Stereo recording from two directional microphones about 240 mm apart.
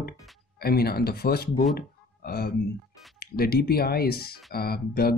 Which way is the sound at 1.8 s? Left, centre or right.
Left.